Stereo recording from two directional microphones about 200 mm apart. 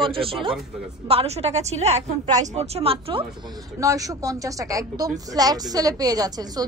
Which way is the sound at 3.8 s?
15° right (ahead or behind).